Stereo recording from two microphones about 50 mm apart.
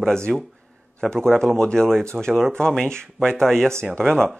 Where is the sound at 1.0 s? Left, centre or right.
Centre.